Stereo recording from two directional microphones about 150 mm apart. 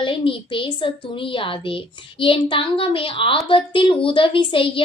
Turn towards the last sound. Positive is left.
turn(degrees=35)  # may be behind; listen again after turning